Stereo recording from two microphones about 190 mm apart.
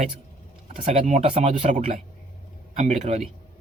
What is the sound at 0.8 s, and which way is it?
Speech, 40° right (ahead or behind).